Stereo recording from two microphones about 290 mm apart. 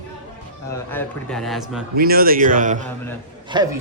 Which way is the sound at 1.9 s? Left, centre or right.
Right.